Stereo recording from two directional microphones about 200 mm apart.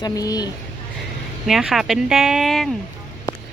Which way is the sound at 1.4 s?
Centre (ahead or behind).